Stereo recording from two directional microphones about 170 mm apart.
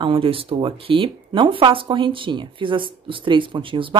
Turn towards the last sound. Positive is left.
turn(degrees=-30)  # may be behind; listen again after turning